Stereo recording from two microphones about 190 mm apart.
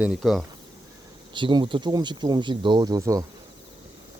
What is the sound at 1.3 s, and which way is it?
Speech, 25° right (ahead or behind).